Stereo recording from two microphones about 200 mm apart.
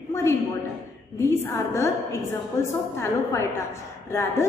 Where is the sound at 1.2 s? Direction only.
15° left (ahead or behind).